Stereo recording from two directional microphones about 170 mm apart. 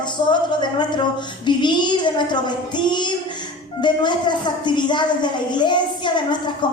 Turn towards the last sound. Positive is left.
turn(degrees=25)  # may be behind; listen again after turning